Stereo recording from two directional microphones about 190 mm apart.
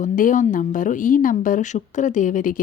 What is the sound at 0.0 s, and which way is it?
A woman's voice, 40° left (ahead or behind).